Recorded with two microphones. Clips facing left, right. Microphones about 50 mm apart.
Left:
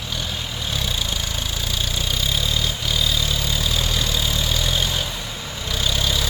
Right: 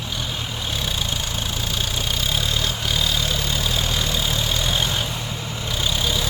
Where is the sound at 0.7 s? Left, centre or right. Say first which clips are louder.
Left 1 dB; right.